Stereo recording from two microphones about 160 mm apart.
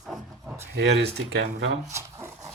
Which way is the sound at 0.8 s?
90° right.